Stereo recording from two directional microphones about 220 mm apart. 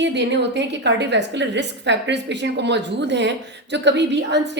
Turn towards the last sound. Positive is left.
turn(degrees=-50)  # may be behind; listen again after turning